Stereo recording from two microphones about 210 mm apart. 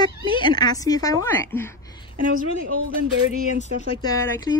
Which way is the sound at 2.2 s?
40° right (ahead or behind).